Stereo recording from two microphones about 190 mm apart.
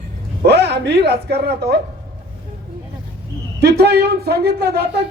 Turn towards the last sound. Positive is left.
turn(degrees=-60)  # may be behind; listen again after turning